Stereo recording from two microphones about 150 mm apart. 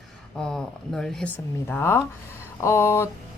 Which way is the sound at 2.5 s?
20° left (ahead or behind).